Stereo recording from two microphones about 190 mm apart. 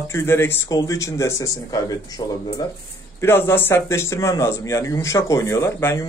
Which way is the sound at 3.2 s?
10° left (ahead or behind).